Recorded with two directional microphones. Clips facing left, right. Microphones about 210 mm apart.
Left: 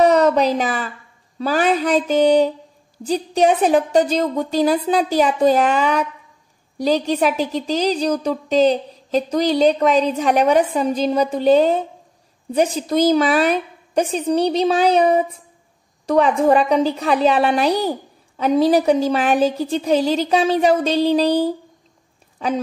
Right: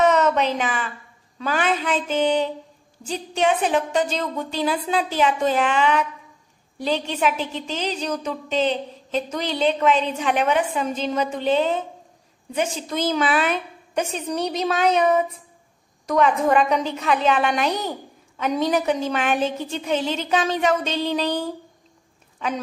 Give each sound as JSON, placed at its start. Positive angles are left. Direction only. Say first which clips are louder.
{"t": 0.0, "sound": "a woman's voice", "louder": "left 4 dB", "side_deg": 35}